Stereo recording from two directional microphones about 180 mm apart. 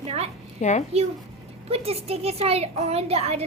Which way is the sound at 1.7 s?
35° right (ahead or behind).